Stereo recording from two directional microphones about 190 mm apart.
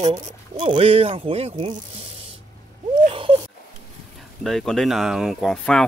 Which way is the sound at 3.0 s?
30° right (ahead or behind).